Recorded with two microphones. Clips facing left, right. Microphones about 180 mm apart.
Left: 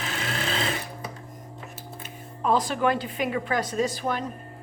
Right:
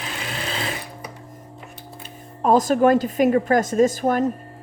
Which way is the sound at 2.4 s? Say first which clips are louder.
Right 7 dB; 45° right (ahead or behind).